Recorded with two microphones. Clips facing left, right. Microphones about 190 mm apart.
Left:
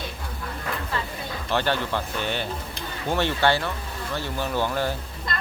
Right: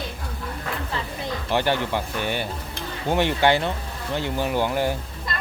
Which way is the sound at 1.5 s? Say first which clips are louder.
Right 2 dB; 15° right (ahead or behind).